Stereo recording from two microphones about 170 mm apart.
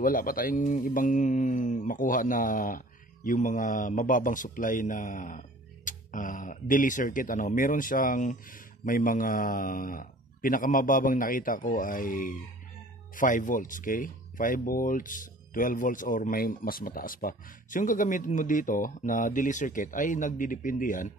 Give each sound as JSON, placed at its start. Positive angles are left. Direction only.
{"t": 0.0, "sound": "speech", "side_deg": 55}